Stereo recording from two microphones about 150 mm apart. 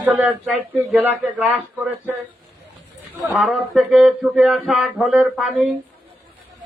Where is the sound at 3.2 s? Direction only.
Centre (ahead or behind).